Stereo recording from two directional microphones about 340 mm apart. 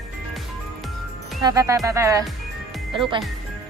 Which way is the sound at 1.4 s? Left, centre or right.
Centre.